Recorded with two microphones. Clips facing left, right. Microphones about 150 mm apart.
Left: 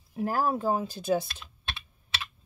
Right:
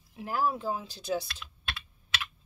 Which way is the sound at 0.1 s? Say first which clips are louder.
Left 3 dB; 45° left (ahead or behind).